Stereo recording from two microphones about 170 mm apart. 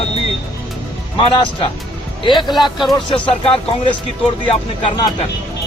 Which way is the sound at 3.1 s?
30° left (ahead or behind).